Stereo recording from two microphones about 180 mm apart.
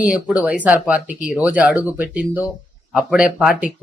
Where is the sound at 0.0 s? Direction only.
5° right (ahead or behind).